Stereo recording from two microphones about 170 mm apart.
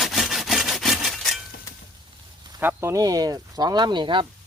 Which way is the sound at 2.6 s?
15° right (ahead or behind).